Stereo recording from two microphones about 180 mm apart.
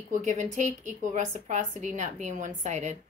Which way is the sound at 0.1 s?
45° right (ahead or behind).